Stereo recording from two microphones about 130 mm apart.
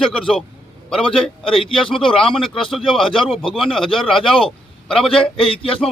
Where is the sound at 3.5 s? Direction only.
5° left (ahead or behind).